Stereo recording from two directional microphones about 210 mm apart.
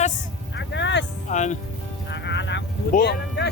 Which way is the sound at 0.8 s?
55° left (ahead or behind).